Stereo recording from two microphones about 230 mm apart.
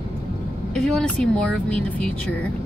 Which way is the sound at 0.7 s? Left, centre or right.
Centre.